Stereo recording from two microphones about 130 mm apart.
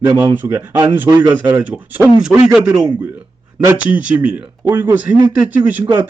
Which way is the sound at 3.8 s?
10° right (ahead or behind).